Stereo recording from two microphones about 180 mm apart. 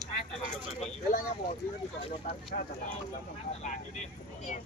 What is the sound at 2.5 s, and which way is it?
Speech, 45° left (ahead or behind).